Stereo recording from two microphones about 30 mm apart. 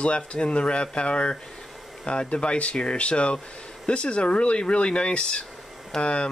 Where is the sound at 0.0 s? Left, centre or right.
Left.